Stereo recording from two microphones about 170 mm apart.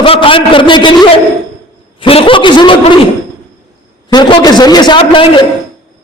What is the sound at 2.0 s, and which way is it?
Speech, 30° left (ahead or behind).